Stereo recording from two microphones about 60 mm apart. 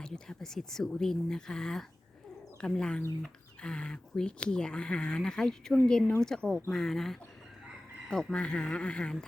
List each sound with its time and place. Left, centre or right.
0.0 s speech: centre